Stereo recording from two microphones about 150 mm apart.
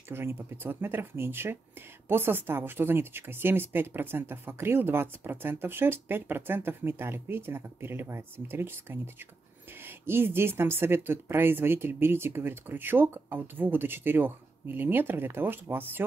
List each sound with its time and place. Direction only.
0.1 s speech: 15° right (ahead or behind)